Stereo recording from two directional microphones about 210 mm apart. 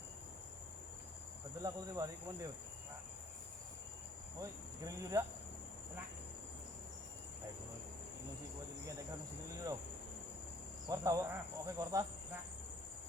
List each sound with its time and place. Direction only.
1.6 s speech: 15° right (ahead or behind)
4.4 s insect: 15° right (ahead or behind)
10.8 s speech: 15° right (ahead or behind)